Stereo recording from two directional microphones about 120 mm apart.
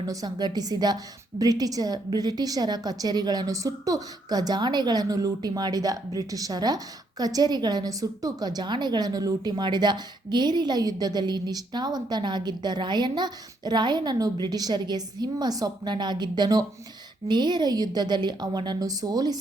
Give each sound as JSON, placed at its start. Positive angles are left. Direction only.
{"t": 0.1, "sound": "a woman's voice", "side_deg": -30}